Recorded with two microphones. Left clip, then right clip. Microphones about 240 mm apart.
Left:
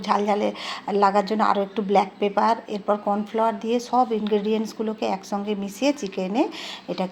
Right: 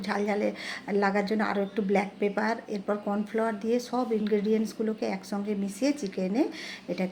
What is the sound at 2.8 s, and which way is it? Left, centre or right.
Speech, left.